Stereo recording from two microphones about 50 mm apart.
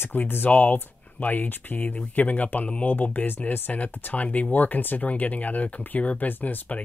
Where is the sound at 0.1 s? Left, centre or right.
Left.